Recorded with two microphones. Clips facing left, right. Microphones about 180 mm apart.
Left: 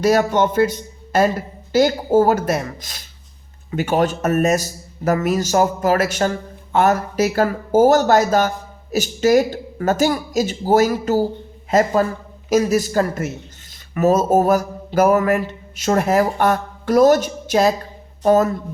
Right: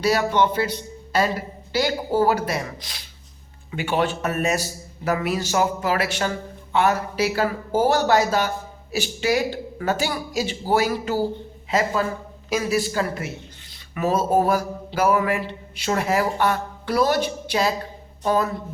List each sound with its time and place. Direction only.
0.0 s speech: 45° left (ahead or behind)